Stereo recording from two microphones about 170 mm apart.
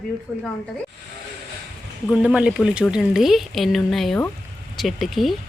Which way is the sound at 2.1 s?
5° right (ahead or behind).